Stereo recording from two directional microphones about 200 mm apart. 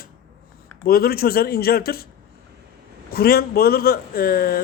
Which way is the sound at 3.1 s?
50° left (ahead or behind).